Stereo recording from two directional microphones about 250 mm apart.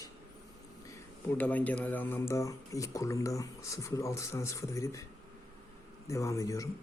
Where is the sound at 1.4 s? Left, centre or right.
Centre.